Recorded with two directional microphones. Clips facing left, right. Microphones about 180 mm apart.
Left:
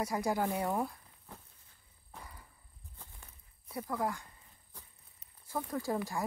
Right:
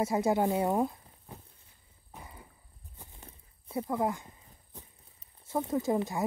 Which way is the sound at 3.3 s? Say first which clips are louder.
Right 6 dB; 25° right (ahead or behind).